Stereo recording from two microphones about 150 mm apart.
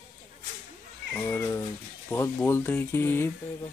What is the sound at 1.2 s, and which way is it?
Speech, 10° left (ahead or behind).